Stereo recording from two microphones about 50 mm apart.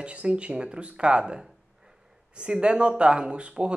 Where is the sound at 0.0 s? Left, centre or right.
Right.